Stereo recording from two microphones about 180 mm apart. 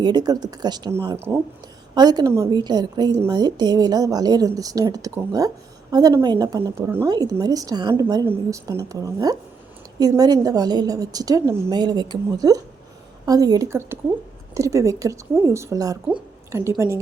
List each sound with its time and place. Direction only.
0.0 s a woman's voice: 25° right (ahead or behind)